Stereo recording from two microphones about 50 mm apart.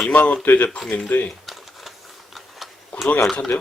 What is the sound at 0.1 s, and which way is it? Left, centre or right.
Speech, left.